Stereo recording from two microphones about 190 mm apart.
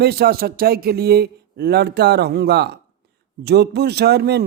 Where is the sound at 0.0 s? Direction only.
55° right (ahead or behind).